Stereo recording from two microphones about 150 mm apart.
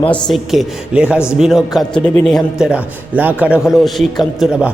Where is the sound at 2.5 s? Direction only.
10° right (ahead or behind).